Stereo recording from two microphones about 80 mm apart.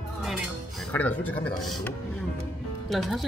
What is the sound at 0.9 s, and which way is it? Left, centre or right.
Speech, left.